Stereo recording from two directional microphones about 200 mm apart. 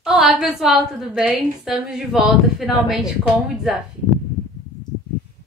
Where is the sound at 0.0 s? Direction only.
Centre (ahead or behind).